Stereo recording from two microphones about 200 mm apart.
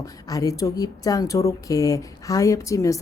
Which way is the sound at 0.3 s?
15° left (ahead or behind).